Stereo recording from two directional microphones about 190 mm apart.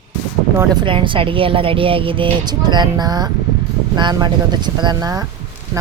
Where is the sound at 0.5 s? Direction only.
25° right (ahead or behind).